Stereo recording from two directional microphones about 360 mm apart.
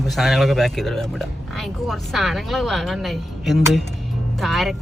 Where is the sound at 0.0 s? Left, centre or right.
Centre.